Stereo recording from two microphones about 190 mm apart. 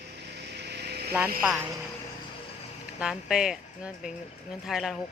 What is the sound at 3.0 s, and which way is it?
Speech, 5° right (ahead or behind).